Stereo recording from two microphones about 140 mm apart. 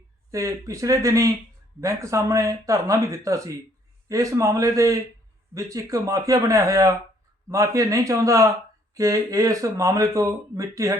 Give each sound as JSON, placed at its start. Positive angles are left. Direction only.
{"t": 0.3, "sound": "speech", "side_deg": -20}